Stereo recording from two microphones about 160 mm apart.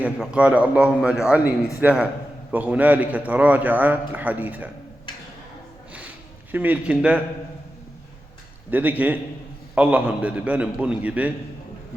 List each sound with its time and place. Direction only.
0.2 s a man's voice: 5° right (ahead or behind)
6.5 s a man's voice: 10° right (ahead or behind)
8.7 s a man's voice: 10° right (ahead or behind)